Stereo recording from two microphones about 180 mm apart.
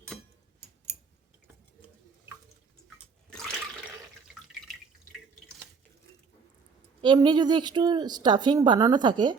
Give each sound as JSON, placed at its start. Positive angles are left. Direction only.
{"t": 7.0, "sound": "a woman's voice", "side_deg": -25}